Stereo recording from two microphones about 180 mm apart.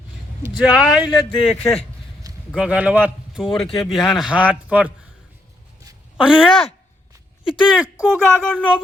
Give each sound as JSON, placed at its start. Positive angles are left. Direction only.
{"t": 0.5, "sound": "speech", "side_deg": -5}
{"t": 2.3, "sound": "a sound", "side_deg": -20}
{"t": 2.6, "sound": "speech", "side_deg": -10}
{"t": 3.5, "sound": "speech", "side_deg": 25}
{"t": 3.9, "sound": "speech", "side_deg": 0}
{"t": 6.1, "sound": "speech", "side_deg": -5}